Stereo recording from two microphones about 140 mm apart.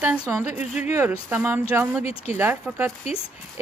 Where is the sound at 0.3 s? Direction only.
15° right (ahead or behind).